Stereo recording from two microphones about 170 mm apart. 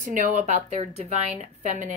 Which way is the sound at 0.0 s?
50° right (ahead or behind).